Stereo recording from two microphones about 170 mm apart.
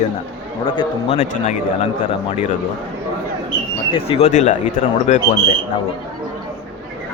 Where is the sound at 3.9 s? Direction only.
35° left (ahead or behind).